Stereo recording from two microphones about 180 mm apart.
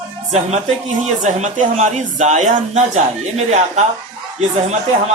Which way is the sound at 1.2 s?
40° right (ahead or behind).